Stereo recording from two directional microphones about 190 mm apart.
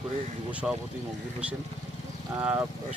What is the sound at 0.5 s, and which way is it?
Speech, 5° right (ahead or behind).